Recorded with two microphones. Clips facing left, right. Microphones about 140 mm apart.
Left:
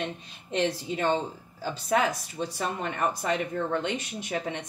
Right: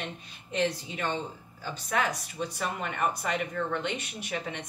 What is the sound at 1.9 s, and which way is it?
Speech, 30° left (ahead or behind).